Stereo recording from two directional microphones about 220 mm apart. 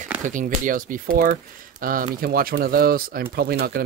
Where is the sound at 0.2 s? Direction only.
35° right (ahead or behind).